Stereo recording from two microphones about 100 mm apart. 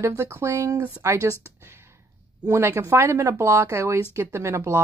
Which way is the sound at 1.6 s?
25° right (ahead or behind).